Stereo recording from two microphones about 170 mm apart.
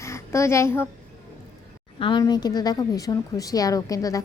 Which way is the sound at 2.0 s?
30° left (ahead or behind).